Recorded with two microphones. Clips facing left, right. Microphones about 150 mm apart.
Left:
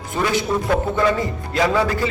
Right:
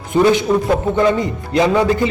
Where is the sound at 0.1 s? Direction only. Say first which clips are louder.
Right 8 dB; 20° right (ahead or behind).